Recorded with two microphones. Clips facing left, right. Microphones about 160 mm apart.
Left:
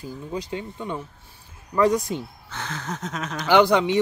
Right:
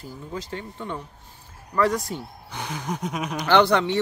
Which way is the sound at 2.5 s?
15° right (ahead or behind).